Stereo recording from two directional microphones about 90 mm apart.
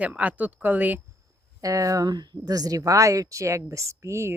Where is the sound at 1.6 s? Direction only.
40° right (ahead or behind).